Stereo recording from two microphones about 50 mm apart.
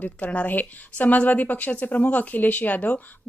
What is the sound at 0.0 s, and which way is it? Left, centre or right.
A woman's voice, left.